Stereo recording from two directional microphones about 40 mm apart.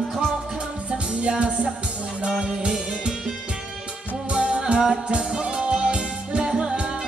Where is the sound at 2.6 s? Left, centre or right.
Centre.